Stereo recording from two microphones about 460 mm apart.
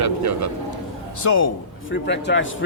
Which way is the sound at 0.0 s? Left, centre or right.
Right.